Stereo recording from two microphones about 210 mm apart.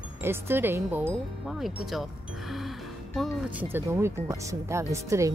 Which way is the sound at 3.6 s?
10° right (ahead or behind).